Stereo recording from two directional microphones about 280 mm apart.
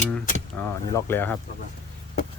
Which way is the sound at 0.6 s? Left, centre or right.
Centre.